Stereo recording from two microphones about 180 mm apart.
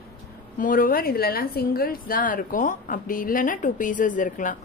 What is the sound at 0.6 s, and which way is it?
A woman's voice, 50° left (ahead or behind).